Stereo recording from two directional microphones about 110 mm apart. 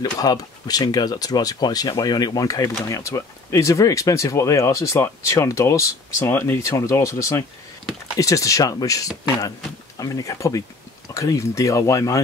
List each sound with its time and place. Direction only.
0.0 s speech: 35° left (ahead or behind)